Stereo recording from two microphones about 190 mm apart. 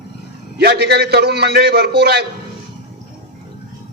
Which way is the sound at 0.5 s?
55° right (ahead or behind).